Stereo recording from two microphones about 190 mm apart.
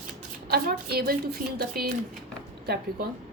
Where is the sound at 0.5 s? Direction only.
55° right (ahead or behind).